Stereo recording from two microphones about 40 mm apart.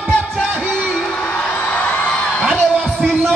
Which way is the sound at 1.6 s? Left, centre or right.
Left.